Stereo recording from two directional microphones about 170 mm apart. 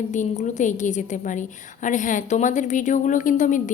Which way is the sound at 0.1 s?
45° left (ahead or behind).